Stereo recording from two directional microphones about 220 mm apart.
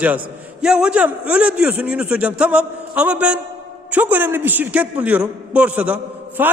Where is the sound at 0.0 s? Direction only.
5° right (ahead or behind).